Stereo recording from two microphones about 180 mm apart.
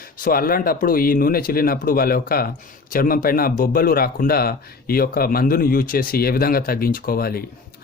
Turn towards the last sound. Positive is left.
turn(degrees=55)  # may be behind; listen again after turning